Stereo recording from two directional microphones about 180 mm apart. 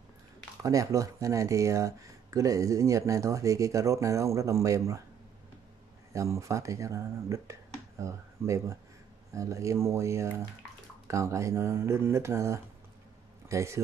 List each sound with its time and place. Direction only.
0.6 s speech: 20° right (ahead or behind)
6.1 s speech: 15° right (ahead or behind)